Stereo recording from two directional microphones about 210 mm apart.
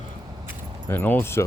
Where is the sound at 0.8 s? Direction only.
10° left (ahead or behind).